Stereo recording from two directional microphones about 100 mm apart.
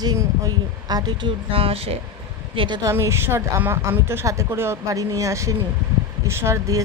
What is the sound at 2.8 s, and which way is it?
A woman's voice, 30° right (ahead or behind).